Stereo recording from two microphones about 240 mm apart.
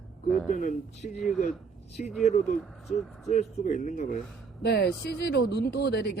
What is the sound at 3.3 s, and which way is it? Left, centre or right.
Speech, left.